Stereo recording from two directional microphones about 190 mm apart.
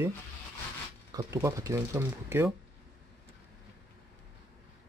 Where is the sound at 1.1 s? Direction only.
20° right (ahead or behind).